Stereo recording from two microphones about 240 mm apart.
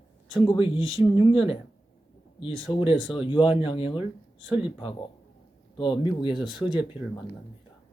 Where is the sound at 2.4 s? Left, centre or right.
Left.